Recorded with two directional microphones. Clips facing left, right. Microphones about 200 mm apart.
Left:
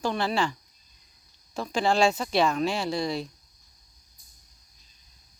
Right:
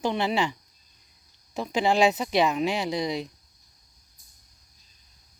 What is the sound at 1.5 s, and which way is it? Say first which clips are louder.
Speech: right 1 dB; 20° right (ahead or behind).